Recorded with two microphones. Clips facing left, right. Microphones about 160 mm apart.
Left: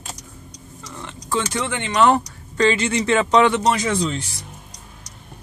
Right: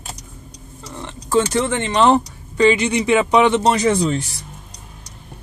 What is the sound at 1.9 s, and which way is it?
Speech, 25° right (ahead or behind).